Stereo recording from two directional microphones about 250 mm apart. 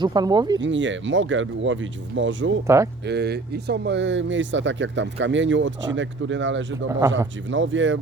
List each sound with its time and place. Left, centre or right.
0.0 s speech: centre
0.6 s speech: right
2.6 s speech: centre
3.1 s speech: right